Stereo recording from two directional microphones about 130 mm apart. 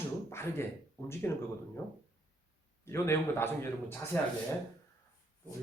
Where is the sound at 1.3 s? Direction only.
15° left (ahead or behind).